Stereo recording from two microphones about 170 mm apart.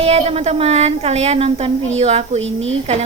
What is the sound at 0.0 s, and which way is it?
A woman's voice, 40° right (ahead or behind).